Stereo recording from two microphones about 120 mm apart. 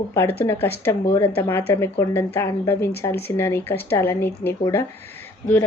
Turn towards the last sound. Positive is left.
turn(degrees=15)  # may be behind; listen again after turning